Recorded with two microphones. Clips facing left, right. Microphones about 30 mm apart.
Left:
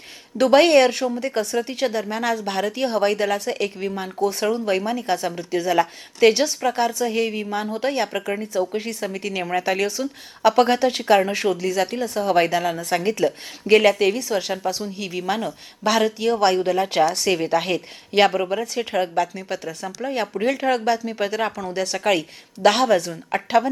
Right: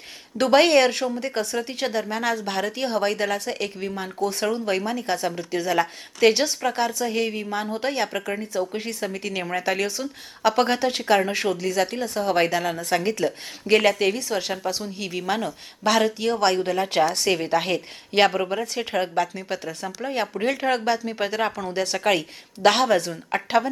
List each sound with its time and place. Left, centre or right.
0.3 s speech: centre